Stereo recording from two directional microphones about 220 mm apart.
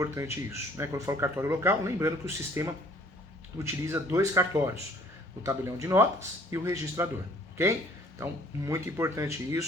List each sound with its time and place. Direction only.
0.0 s speech: 15° right (ahead or behind)
8.2 s speech: 10° right (ahead or behind)